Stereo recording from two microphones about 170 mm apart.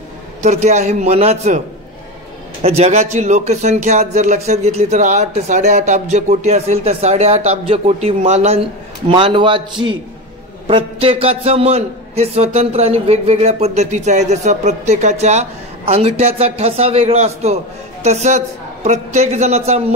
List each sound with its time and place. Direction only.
0.4 s a man's voice: 40° right (ahead or behind)
2.6 s speech: 40° right (ahead or behind)